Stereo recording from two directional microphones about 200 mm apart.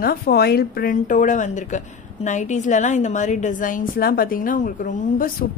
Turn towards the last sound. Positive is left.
turn(degrees=40)  # may be behind; listen again after turning